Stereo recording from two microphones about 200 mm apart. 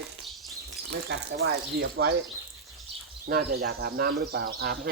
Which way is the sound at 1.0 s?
50° right (ahead or behind).